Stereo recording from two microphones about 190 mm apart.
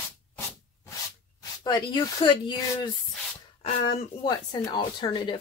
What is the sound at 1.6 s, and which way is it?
Speech, 20° left (ahead or behind).